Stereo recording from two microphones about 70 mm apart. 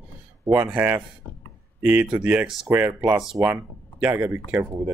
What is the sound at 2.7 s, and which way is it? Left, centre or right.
Speech, right.